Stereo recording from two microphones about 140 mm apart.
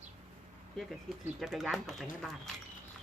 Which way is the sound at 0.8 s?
Centre (ahead or behind).